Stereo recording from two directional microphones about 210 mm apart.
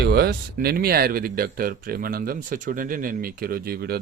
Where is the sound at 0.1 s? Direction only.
50° right (ahead or behind).